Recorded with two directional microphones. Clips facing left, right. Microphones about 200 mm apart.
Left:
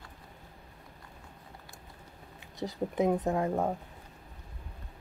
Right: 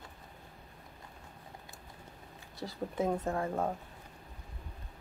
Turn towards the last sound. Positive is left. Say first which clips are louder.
# left 4 dB
turn(degrees=15)  # may be behind; listen again after turning